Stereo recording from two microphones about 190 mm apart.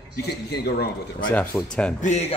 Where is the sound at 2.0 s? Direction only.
35° left (ahead or behind).